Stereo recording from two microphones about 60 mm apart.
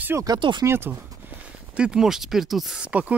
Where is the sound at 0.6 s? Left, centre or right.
Right.